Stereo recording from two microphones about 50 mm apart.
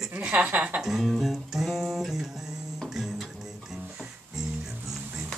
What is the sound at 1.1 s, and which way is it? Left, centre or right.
Music, centre.